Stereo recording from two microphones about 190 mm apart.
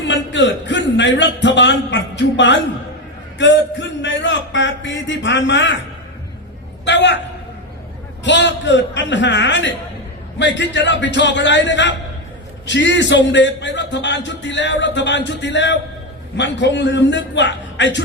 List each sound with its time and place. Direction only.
0.0 s a man's voice: 70° left (ahead or behind)
6.8 s a man's voice: 70° left (ahead or behind)
8.2 s a man's voice: 70° left (ahead or behind)